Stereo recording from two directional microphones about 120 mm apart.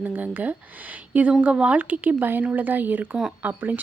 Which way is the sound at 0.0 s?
15° right (ahead or behind).